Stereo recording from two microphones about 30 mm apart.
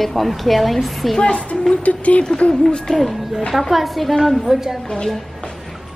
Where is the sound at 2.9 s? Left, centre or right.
Centre.